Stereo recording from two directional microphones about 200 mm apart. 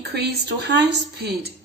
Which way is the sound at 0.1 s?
55° right (ahead or behind).